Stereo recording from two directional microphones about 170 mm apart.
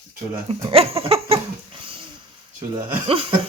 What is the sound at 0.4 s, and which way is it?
Speech, 35° right (ahead or behind).